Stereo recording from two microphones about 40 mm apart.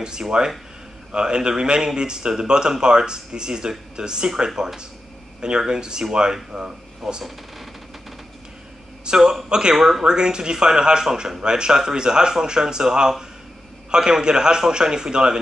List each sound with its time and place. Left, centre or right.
0.0 s speech: centre
9.0 s speech: centre
9.8 s speech: centre
10.0 s speech: centre